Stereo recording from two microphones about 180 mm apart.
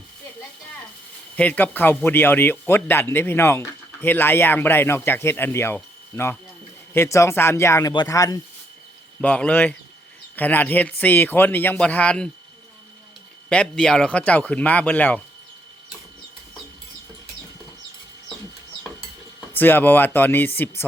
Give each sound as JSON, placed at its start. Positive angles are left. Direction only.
{"t": 1.4, "sound": "speech", "side_deg": 10}
{"t": 9.2, "sound": "speech", "side_deg": 10}
{"t": 13.5, "sound": "speech", "side_deg": 5}
{"t": 19.5, "sound": "speech", "side_deg": 10}